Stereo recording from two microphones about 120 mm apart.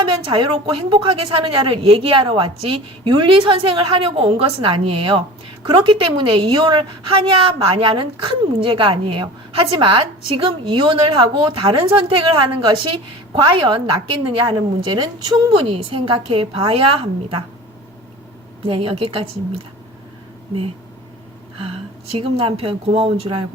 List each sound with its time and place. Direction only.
0.0 s a woman's voice: 45° right (ahead or behind)
18.6 s a woman's voice: 50° right (ahead or behind)
21.6 s a woman's voice: 55° right (ahead or behind)